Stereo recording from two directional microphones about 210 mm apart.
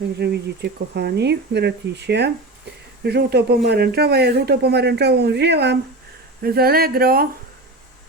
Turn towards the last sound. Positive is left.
turn(degrees=-45)  # may be behind; listen again after turning